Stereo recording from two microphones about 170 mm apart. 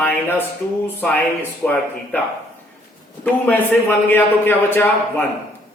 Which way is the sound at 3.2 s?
10° left (ahead or behind).